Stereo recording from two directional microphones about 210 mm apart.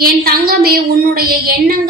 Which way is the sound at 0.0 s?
45° right (ahead or behind).